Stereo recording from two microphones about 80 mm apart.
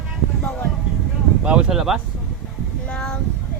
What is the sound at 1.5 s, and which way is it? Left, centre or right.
Speech, centre.